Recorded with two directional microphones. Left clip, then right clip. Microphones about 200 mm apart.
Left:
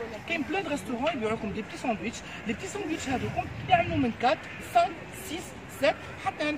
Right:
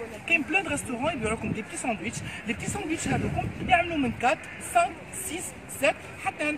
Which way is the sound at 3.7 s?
15° left (ahead or behind).